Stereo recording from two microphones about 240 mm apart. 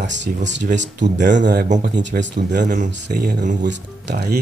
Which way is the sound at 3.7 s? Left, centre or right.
Right.